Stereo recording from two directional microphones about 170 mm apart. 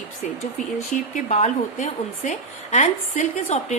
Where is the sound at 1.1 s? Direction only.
45° left (ahead or behind).